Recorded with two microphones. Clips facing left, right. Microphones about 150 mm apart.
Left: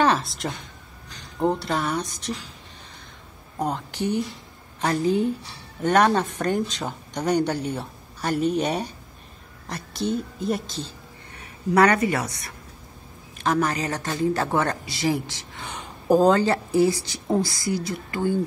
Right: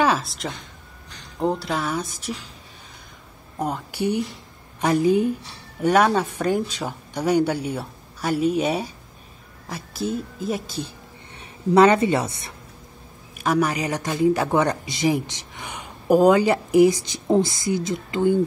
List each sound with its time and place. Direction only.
0.0 s a woman's voice: centre (ahead or behind)
3.5 s a woman's voice: 5° right (ahead or behind)
11.3 s a woman's voice: 25° right (ahead or behind)
13.4 s speech: 10° right (ahead or behind)